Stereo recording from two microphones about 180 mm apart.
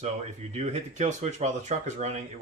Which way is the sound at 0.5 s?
40° right (ahead or behind).